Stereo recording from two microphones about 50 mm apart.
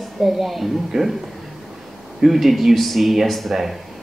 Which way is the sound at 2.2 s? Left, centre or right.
Centre.